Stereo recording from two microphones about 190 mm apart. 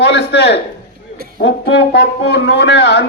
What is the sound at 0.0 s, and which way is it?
Speech, 60° left (ahead or behind).